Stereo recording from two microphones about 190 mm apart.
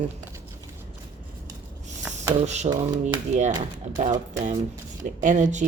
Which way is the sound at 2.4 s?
35° right (ahead or behind).